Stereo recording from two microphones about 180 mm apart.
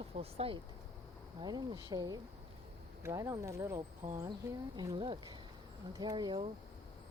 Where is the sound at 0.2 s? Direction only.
30° right (ahead or behind).